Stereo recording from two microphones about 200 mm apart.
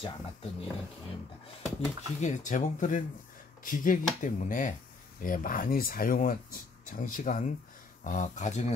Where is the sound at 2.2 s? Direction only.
35° left (ahead or behind).